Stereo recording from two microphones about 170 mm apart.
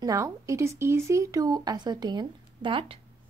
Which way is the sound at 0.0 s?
20° right (ahead or behind).